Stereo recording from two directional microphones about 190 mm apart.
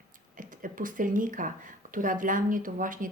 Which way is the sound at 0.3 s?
45° right (ahead or behind).